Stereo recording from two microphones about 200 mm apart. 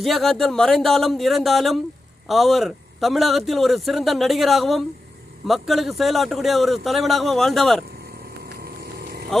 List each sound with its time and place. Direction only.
0.0 s speech: centre (ahead or behind)
8.6 s vehicle: 50° right (ahead or behind)